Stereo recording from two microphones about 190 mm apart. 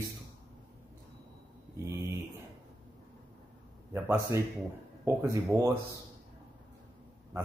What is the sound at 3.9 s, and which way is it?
A man's voice, 10° right (ahead or behind).